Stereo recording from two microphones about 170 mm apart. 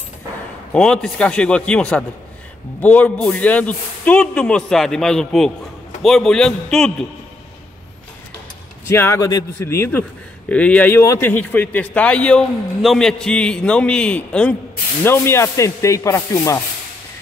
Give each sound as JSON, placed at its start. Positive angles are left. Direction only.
{"t": 0.7, "sound": "a man's voice", "side_deg": 5}
{"t": 8.8, "sound": "a man's voice", "side_deg": 15}